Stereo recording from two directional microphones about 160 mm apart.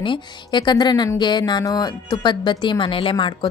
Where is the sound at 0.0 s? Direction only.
30° left (ahead or behind).